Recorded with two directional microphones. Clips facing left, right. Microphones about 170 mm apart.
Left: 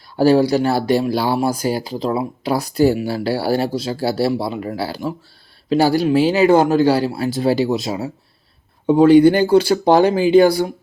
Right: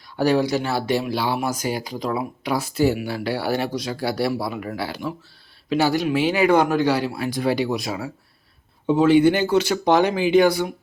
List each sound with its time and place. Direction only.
0.2 s speech: 30° left (ahead or behind)
8.9 s speech: 40° left (ahead or behind)